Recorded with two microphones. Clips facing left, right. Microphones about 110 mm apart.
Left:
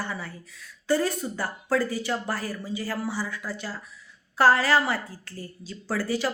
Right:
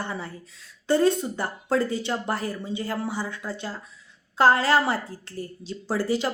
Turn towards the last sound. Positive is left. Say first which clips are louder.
# right 2 dB
turn(degrees=-20)  # may be behind; listen again after turning